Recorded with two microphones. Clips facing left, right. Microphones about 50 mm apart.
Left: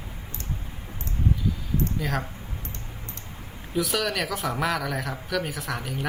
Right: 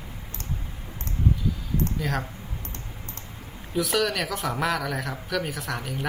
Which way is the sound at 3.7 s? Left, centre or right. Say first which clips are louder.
Right 1 dB; centre.